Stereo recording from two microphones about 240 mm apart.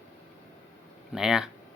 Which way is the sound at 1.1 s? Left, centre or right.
Centre.